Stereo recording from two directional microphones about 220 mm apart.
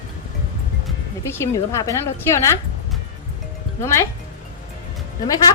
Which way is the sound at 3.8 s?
10° left (ahead or behind).